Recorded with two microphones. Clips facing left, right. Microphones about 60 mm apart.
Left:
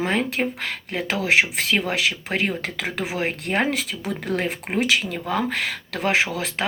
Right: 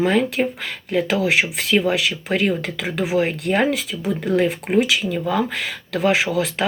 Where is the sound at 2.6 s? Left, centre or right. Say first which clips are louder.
Right 2 dB; left.